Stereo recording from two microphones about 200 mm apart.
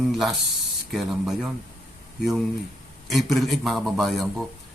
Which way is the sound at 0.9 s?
5° right (ahead or behind).